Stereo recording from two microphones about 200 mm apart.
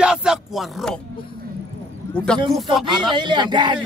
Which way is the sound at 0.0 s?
5° right (ahead or behind).